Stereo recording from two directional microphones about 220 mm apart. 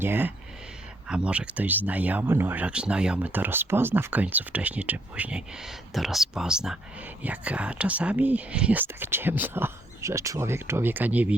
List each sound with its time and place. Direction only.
0.0 s speech: 10° right (ahead or behind)